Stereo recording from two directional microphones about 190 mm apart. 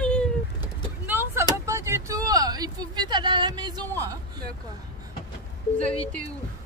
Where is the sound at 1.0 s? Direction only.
10° right (ahead or behind).